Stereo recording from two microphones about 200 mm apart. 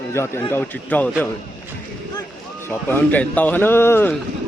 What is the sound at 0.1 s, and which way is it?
Speech, 10° left (ahead or behind).